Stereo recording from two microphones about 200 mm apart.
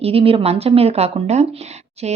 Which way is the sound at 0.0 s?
30° right (ahead or behind).